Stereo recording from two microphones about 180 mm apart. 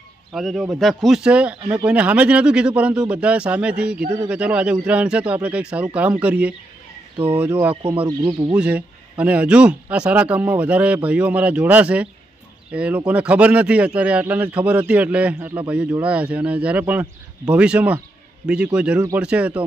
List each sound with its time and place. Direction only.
0.3 s a man's voice: centre (ahead or behind)
7.7 s speech: 30° right (ahead or behind)
8.5 s a man's voice: 5° right (ahead or behind)